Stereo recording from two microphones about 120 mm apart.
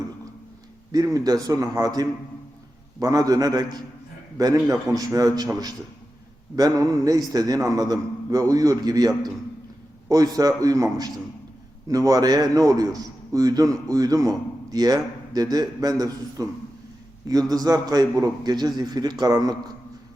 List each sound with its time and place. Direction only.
0.9 s a man's voice: 30° right (ahead or behind)
17.5 s a man's voice: 30° right (ahead or behind)